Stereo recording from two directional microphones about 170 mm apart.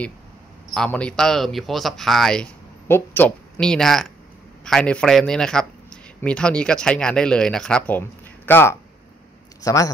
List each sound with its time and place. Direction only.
0.7 s speech: 5° left (ahead or behind)